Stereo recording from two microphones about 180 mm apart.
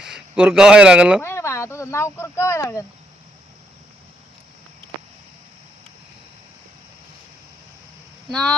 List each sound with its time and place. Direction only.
0.0 s speech: 5° right (ahead or behind)
1.2 s speech: 15° left (ahead or behind)
8.3 s speech: 5° left (ahead or behind)